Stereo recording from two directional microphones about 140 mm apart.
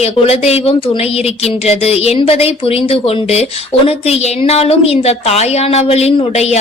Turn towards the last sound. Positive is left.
turn(degrees=50)  # may be behind; listen again after turning